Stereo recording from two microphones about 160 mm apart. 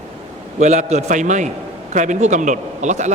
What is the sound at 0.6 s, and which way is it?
A man's voice, 45° right (ahead or behind).